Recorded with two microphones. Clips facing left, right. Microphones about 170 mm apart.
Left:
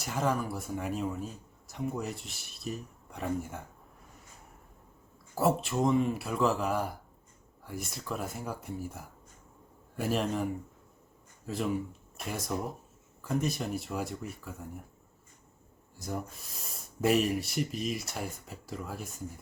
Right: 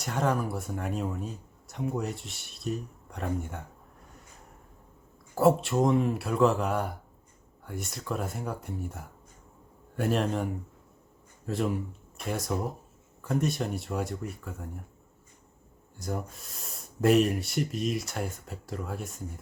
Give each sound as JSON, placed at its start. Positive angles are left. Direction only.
{"t": 0.0, "sound": "speech", "side_deg": 0}
{"t": 5.3, "sound": "speech", "side_deg": 0}
{"t": 16.0, "sound": "speech", "side_deg": 0}